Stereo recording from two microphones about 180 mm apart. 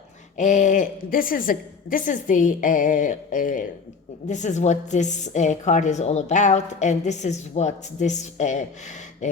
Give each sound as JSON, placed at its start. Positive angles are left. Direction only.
{"t": 0.3, "sound": "a woman's voice", "side_deg": 40}